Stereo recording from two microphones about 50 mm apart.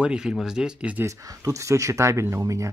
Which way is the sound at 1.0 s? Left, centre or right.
Right.